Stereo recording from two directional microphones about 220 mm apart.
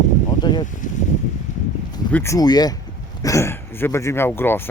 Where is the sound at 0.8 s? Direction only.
35° left (ahead or behind).